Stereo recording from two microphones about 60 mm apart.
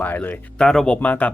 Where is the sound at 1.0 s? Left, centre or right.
Left.